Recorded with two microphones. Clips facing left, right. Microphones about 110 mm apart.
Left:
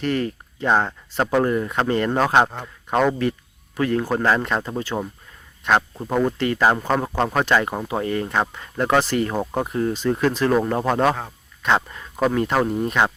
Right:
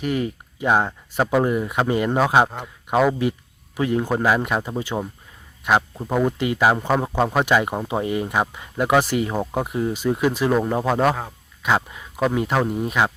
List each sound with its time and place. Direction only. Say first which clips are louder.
0.0 s speech: left 1 dB; 10° right (ahead or behind)
3.8 s speech: even; 15° right (ahead or behind)